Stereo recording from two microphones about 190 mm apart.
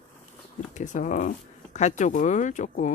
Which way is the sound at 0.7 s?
40° left (ahead or behind).